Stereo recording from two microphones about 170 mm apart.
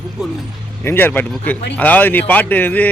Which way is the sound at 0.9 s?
10° left (ahead or behind).